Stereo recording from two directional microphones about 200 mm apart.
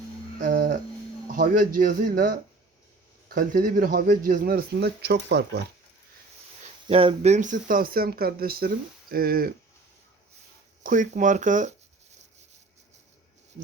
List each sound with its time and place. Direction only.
0.3 s a sound: 45° right (ahead or behind)
1.3 s speech: 45° right (ahead or behind)
6.8 s speech: 25° right (ahead or behind); by 9.5 s 45° right (ahead or behind)
10.8 s speech: 40° right (ahead or behind)